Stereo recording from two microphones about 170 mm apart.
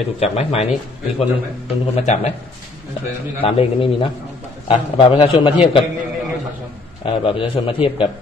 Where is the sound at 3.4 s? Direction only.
35° left (ahead or behind).